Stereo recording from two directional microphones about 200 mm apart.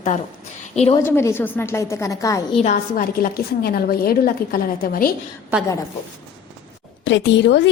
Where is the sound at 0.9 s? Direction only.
15° left (ahead or behind).